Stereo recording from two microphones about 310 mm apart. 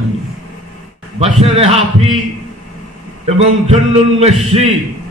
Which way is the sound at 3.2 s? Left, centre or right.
Centre.